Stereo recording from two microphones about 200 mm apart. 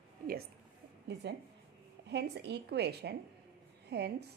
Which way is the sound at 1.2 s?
60° right (ahead or behind).